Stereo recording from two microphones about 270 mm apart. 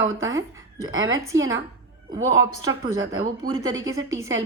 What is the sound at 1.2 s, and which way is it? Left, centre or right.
Speech, centre.